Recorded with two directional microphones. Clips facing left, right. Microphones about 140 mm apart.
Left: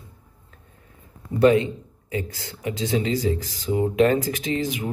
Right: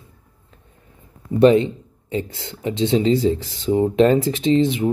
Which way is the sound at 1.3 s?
25° right (ahead or behind).